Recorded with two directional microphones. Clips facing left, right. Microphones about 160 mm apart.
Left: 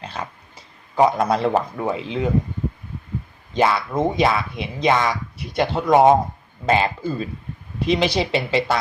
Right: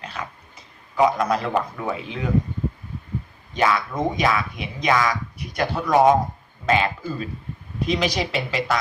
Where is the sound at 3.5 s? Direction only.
30° left (ahead or behind).